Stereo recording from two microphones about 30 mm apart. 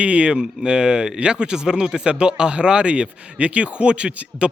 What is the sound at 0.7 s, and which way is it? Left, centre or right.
Speech, right.